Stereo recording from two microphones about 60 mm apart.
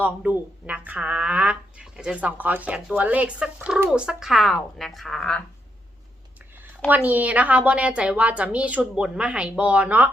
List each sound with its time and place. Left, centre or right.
0.0 s speech: right; by 5.4 s centre
6.6 s speech: right